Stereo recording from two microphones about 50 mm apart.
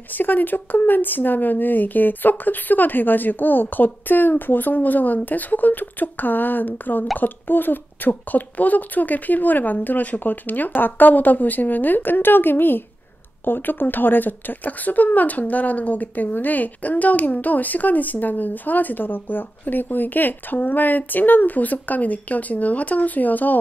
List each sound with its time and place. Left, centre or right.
0.1 s speech: left